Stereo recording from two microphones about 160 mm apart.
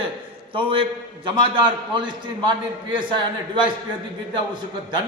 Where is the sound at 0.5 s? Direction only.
35° right (ahead or behind).